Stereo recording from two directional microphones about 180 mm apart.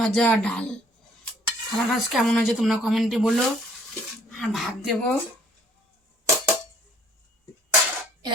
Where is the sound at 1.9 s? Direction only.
Centre (ahead or behind).